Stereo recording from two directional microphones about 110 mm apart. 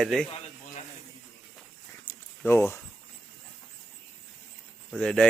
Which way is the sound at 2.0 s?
20° left (ahead or behind).